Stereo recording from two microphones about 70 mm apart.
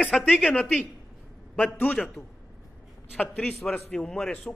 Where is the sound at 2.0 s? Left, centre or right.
Centre.